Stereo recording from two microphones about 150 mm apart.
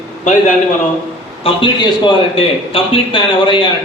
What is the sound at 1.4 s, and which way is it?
A man's voice, 30° left (ahead or behind).